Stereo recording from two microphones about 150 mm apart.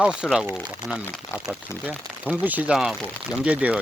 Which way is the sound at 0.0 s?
5° right (ahead or behind).